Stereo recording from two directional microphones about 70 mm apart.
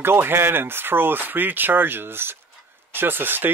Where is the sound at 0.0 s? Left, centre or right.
Right.